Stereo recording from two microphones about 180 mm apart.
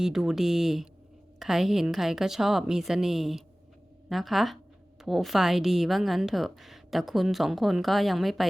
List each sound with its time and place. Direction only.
0.0 s a woman's voice: centre (ahead or behind)